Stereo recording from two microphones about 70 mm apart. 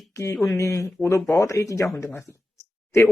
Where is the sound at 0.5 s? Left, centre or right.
Left.